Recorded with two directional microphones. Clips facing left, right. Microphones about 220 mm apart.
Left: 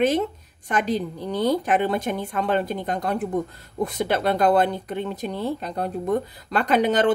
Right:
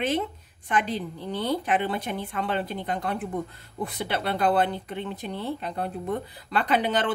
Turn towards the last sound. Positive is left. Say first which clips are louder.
# left 6 dB
turn(degrees=45)  # may be behind; listen again after turning